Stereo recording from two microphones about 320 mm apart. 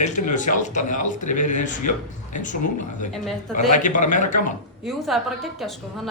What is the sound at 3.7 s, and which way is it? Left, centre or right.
Speech, left.